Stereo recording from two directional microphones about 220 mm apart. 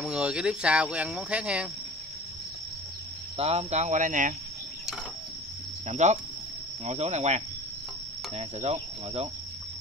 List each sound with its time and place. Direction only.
0.0 s speech: 5° right (ahead or behind)
3.3 s speech: 30° right (ahead or behind)
5.9 s speech: 30° right (ahead or behind)